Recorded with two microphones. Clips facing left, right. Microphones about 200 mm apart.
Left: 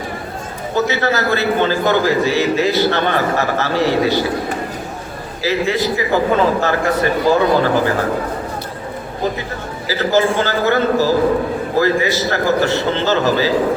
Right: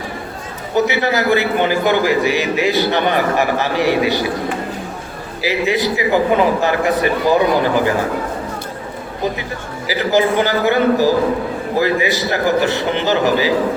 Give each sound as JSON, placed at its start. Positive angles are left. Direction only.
{"t": 0.9, "sound": "a man's voice", "side_deg": -15}
{"t": 5.4, "sound": "a man's voice", "side_deg": -15}
{"t": 9.8, "sound": "a man's voice", "side_deg": -15}